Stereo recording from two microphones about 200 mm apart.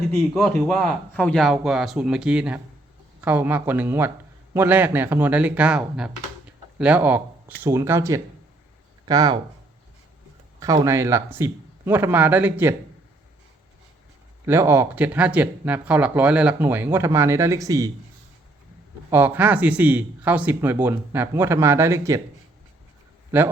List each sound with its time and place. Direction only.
0.2 s speech: centre (ahead or behind); by 9.4 s 20° right (ahead or behind)
10.6 s speech: 15° right (ahead or behind)
14.4 s speech: 10° right (ahead or behind)
19.1 s speech: 10° right (ahead or behind)